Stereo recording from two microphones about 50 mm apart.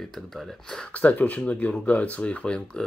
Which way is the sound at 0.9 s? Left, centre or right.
Left.